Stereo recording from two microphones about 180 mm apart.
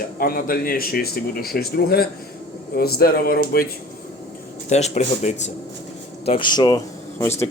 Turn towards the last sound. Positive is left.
turn(degrees=15)  # may be behind; listen again after turning